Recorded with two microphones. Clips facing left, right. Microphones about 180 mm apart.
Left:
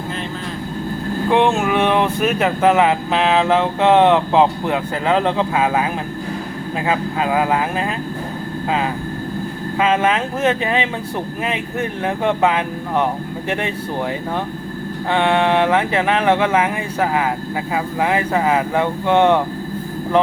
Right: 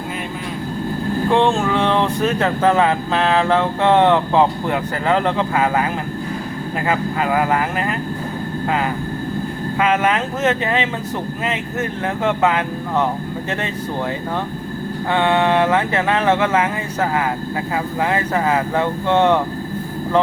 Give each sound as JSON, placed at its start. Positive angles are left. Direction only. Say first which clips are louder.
{"t": 1.3, "sound": "speech", "louder": "left 1 dB", "side_deg": 15}
{"t": 9.7, "sound": "speech", "louder": "left 1 dB", "side_deg": 20}
{"t": 15.1, "sound": "speech", "louder": "even", "side_deg": 15}